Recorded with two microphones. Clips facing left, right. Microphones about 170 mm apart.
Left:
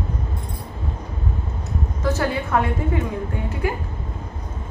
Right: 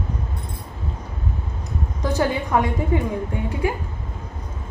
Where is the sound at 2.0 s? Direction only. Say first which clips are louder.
Right 1 dB; 15° right (ahead or behind).